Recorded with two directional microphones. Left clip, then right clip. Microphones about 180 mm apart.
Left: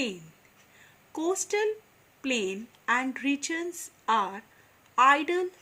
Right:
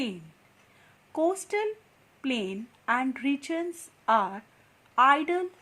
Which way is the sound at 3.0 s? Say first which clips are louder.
Even; 60° right (ahead or behind).